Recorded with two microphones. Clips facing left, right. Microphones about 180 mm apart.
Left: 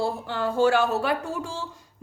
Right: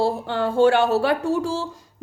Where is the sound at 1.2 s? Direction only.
80° right.